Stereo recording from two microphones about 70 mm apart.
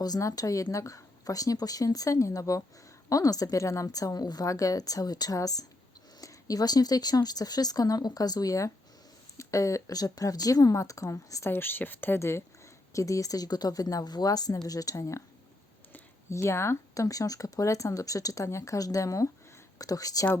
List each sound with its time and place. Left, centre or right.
0.2 s a woman's voice: left
11.5 s speech: left
12.9 s a woman's voice: left
16.3 s speech: left
16.9 s a woman's voice: left